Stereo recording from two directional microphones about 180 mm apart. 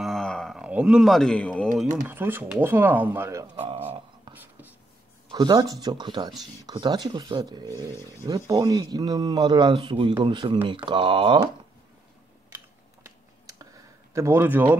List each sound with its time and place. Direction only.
0.0 s a sound: centre (ahead or behind)
2.0 s speech: 10° right (ahead or behind)
3.5 s speech: 30° right (ahead or behind)
5.3 s speech: 25° right (ahead or behind)
13.0 s typing: 20° right (ahead or behind)
14.1 s speech: 15° right (ahead or behind)